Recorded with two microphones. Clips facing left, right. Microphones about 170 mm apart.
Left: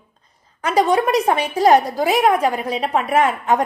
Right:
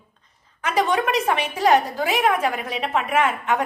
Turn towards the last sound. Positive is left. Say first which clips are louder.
# left 4 dB
turn(degrees=35)  # may be behind; listen again after turning